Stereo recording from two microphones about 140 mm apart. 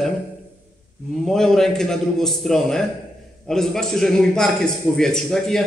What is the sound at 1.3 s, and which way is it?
A man's voice, 5° left (ahead or behind).